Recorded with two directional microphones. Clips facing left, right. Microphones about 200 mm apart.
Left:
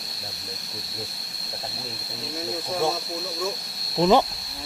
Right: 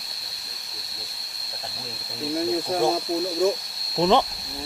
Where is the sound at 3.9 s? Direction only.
5° left (ahead or behind).